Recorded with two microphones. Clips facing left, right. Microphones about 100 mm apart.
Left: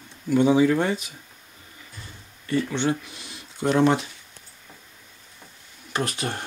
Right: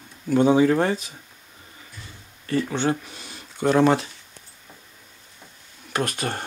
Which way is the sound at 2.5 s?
40° right (ahead or behind).